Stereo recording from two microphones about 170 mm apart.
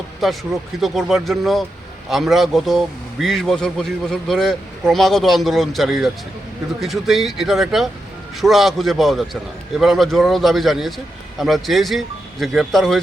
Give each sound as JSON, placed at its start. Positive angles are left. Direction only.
{"t": 0.8, "sound": "a man's voice", "side_deg": 0}